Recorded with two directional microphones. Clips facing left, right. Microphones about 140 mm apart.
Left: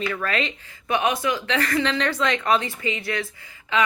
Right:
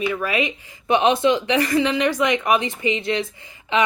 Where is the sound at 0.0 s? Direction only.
10° right (ahead or behind).